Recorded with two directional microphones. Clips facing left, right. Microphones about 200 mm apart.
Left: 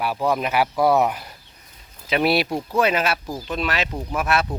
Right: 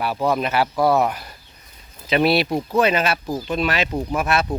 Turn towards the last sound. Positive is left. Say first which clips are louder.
# right 1 dB
turn(degrees=5)  # may be behind; listen again after turning